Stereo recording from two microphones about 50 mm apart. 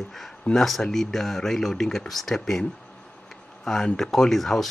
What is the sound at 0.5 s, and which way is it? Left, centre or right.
Speech, left.